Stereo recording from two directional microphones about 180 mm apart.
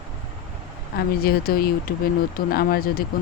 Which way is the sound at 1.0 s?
60° left (ahead or behind).